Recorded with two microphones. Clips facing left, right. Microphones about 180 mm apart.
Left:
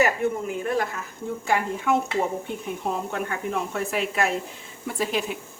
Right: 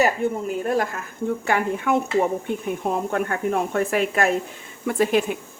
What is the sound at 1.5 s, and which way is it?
Speech, 60° right (ahead or behind).